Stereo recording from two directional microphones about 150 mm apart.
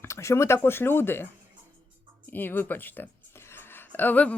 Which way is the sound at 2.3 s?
15° left (ahead or behind).